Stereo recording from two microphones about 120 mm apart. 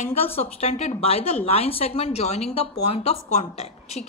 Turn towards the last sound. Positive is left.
turn(degrees=65)  # may be behind; listen again after turning